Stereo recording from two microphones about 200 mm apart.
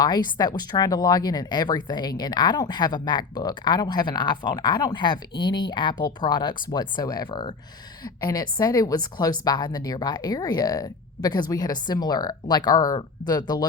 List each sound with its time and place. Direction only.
0.0 s speech: 20° left (ahead or behind)